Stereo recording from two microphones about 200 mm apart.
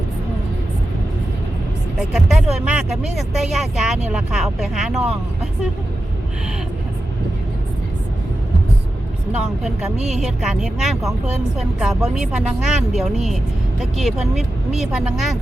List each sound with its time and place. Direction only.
2.1 s speech: 5° right (ahead or behind)
10.1 s speech: centre (ahead or behind)